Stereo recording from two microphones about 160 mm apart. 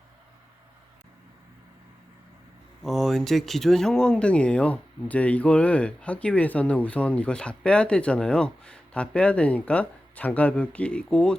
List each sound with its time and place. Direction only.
2.8 s speech: centre (ahead or behind)